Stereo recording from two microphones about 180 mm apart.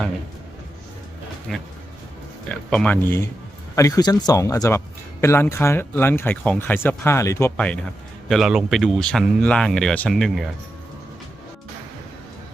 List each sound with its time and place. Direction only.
1.5 s speech: centre (ahead or behind)